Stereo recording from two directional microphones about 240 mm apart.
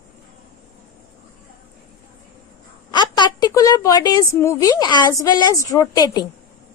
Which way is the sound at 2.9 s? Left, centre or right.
Centre.